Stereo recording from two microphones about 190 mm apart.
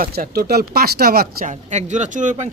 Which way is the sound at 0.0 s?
50° right (ahead or behind).